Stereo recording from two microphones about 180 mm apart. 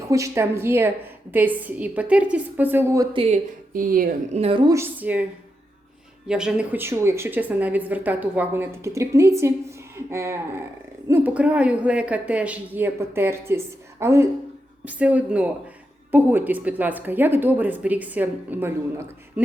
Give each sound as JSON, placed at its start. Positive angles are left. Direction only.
{"t": 0.1, "sound": "speech", "side_deg": -15}
{"t": 3.7, "sound": "speech", "side_deg": -50}
{"t": 4.4, "sound": "a woman's voice", "side_deg": -30}
{"t": 4.7, "sound": "speech", "side_deg": -10}
{"t": 6.2, "sound": "speech", "side_deg": -5}